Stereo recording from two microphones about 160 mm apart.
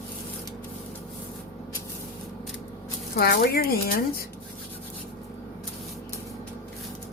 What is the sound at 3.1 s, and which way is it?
Speech, 85° left.